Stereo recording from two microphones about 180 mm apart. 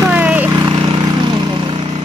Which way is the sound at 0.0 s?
10° right (ahead or behind).